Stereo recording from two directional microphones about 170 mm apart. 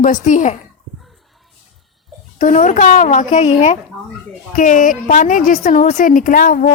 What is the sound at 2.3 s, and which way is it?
A woman's voice, 45° left (ahead or behind).